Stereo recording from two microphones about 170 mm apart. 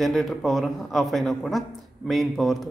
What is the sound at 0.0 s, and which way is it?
A man's voice, centre (ahead or behind).